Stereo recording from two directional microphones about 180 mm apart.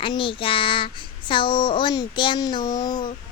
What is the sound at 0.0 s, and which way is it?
Child singing, 30° left (ahead or behind).